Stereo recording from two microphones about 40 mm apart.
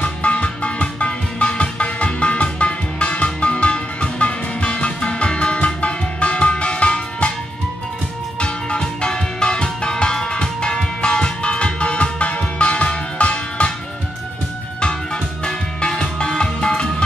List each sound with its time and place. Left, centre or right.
0.0 s music: left
8.4 s music: left
15.4 s music: centre